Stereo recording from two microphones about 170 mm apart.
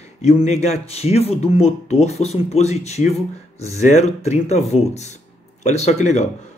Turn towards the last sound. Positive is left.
turn(degrees=40)  # may be behind; listen again after turning